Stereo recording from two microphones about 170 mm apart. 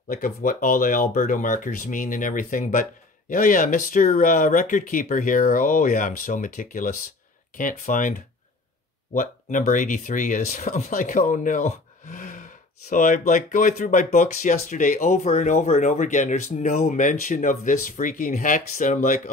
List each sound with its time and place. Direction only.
0.1 s speech: 55° left (ahead or behind)